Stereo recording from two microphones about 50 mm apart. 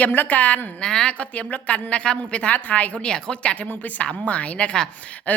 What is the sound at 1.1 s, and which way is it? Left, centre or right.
A woman's voice, left.